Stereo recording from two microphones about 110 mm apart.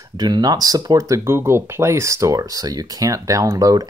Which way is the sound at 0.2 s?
35° right (ahead or behind).